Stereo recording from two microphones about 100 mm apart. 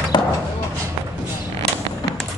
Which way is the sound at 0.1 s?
50° left (ahead or behind).